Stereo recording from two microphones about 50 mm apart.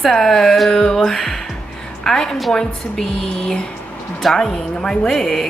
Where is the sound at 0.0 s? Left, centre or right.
Centre.